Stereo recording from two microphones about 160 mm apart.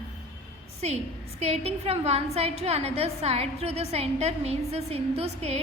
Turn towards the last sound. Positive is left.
turn(degrees=-40)  # may be behind; listen again after turning